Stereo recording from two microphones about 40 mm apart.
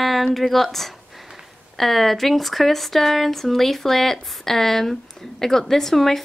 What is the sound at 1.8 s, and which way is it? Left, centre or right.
Speech, centre.